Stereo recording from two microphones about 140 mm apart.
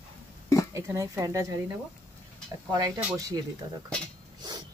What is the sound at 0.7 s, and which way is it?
Speech, 20° right (ahead or behind).